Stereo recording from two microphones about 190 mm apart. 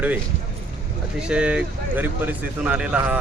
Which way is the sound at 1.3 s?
5° right (ahead or behind).